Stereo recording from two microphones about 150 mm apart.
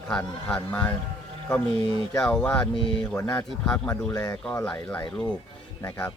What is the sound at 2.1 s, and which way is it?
A man's voice, 5° left (ahead or behind).